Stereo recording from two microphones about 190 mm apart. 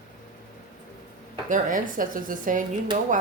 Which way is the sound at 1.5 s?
45° right (ahead or behind).